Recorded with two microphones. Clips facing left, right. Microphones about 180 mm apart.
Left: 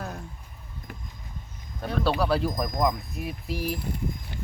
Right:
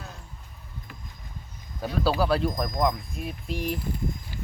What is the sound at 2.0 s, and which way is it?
Speech, centre (ahead or behind).